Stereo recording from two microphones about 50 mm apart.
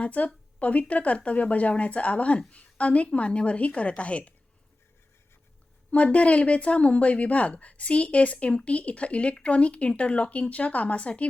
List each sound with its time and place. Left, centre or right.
0.0 s speech: left
5.9 s speech: left